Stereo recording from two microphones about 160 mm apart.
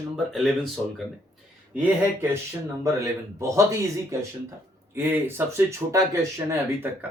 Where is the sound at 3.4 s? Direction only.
20° right (ahead or behind).